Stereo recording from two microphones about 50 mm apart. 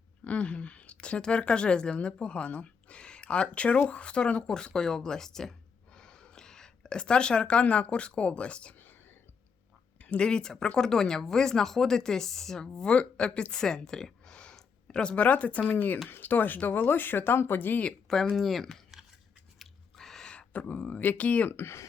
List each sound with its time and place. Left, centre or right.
0.3 s speech: left
10.0 s speech: left
18.3 s speech: centre
19.5 s a sound: centre
20.3 s speech: left
21.5 s speech: left